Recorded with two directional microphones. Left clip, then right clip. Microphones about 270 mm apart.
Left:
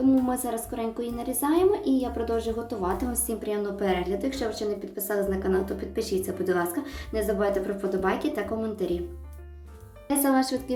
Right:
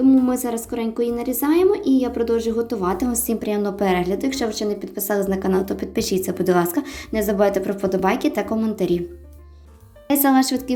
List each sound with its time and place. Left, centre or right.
0.3 s a woman's voice: right
10.1 s a woman's voice: right